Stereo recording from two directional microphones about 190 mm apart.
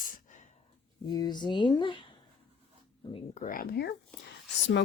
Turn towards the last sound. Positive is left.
turn(degrees=0)  # may be behind; listen again after turning